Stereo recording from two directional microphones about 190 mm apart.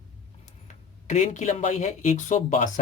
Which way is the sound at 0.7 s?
40° left (ahead or behind).